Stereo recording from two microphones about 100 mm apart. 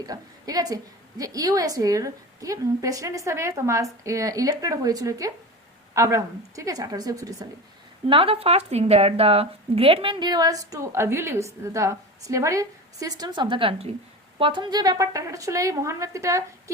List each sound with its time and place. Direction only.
0.0 s a woman's voice: 40° right (ahead or behind)
8.0 s speech: 65° right (ahead or behind)
14.3 s a woman's voice: 60° right (ahead or behind); by 16.4 s 30° right (ahead or behind)